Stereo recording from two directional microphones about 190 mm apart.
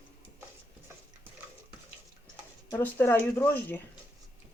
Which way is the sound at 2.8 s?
10° left (ahead or behind).